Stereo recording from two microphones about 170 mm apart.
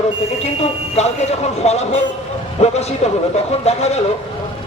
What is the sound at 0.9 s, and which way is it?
Speech, 40° left (ahead or behind).